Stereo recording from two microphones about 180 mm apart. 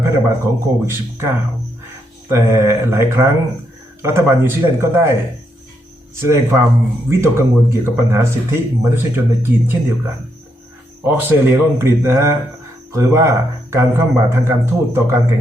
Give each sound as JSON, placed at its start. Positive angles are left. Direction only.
{"t": 0.0, "sound": "speech", "side_deg": -15}
{"t": 2.3, "sound": "speech", "side_deg": -15}
{"t": 6.1, "sound": "speech", "side_deg": -15}
{"t": 11.0, "sound": "speech", "side_deg": -10}